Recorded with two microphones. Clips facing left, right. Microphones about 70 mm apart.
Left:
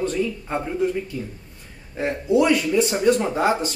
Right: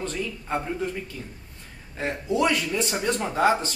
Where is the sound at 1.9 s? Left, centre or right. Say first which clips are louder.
Left 6 dB; centre.